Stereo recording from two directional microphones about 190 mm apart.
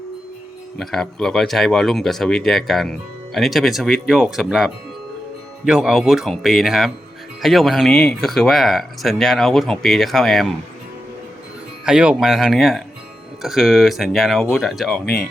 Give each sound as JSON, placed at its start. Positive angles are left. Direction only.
{"t": 0.8, "sound": "speech", "side_deg": 0}
{"t": 11.9, "sound": "speech", "side_deg": -5}
{"t": 15.0, "sound": "speech", "side_deg": 55}